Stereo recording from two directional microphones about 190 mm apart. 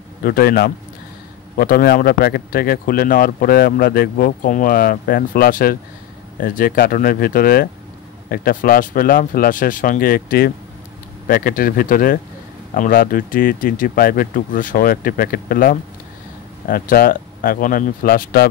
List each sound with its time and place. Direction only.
0.2 s speech: 50° left (ahead or behind)